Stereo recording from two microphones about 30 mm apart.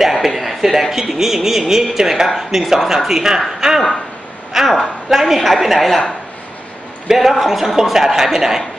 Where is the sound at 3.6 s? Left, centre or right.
Centre.